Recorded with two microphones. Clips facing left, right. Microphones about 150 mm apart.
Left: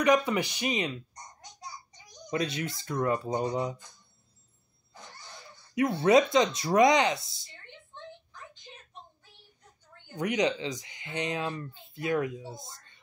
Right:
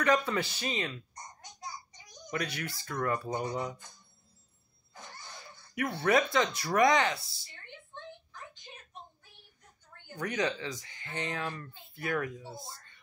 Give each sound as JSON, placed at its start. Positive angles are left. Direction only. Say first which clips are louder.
{"t": 0.0, "sound": "speech", "louder": "left 4 dB", "side_deg": 15}
{"t": 2.3, "sound": "speech", "louder": "left 5 dB", "side_deg": 20}
{"t": 5.8, "sound": "speech", "louder": "left 6 dB", "side_deg": 20}
{"t": 10.1, "sound": "speech", "louder": "left 5 dB", "side_deg": 20}